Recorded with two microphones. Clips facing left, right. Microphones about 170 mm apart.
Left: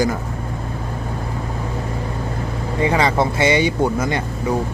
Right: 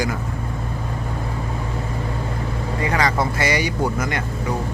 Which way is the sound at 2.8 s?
25° left (ahead or behind).